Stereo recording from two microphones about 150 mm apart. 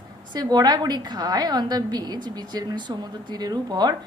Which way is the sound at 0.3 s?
25° right (ahead or behind).